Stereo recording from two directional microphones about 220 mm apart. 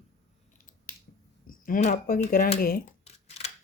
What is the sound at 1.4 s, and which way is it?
Speech, 40° left (ahead or behind).